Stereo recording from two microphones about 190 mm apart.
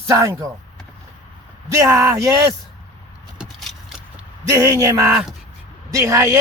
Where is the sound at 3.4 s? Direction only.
Centre (ahead or behind).